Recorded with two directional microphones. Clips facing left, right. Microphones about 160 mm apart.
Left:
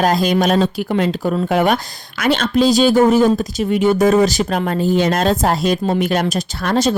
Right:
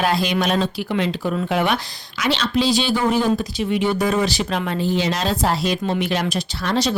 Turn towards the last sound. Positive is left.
turn(degrees=50)  # may be behind; listen again after turning